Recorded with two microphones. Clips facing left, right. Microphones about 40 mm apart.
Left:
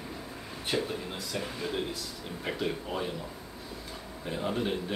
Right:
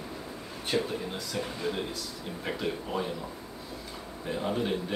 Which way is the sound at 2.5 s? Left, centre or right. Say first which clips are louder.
Even; centre.